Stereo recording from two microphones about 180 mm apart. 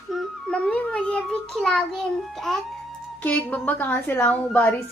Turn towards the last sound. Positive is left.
turn(degrees=10)  # may be behind; listen again after turning